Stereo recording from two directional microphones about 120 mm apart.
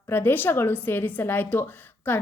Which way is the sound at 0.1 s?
15° left (ahead or behind).